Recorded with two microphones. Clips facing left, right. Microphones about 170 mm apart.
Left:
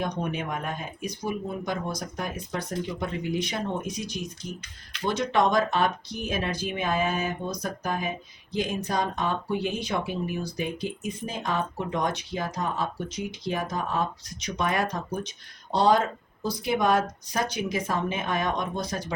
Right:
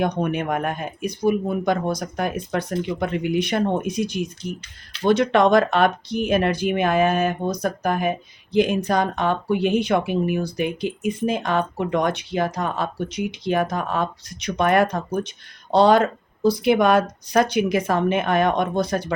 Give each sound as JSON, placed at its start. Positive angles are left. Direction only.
{"t": 0.0, "sound": "speech", "side_deg": -65}